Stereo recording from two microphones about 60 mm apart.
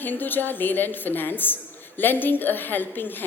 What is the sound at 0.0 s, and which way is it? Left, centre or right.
A woman's voice, left.